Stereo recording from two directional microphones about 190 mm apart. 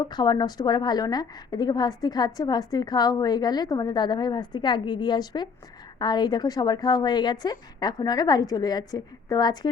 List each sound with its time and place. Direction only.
0.0 s a woman's voice: 20° left (ahead or behind)